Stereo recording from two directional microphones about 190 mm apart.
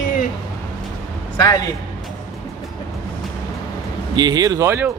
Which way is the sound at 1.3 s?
20° left (ahead or behind).